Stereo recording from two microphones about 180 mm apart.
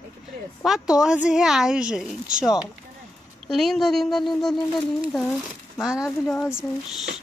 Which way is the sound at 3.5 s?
Centre (ahead or behind).